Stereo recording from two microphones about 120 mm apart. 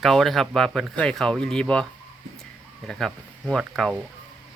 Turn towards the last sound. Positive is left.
turn(degrees=5)  # may be behind; listen again after turning